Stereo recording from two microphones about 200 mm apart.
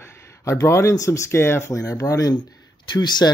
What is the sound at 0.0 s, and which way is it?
Speech, 15° left (ahead or behind).